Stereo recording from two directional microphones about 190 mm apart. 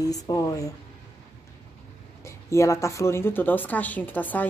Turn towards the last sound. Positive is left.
turn(degrees=10)  # may be behind; listen again after turning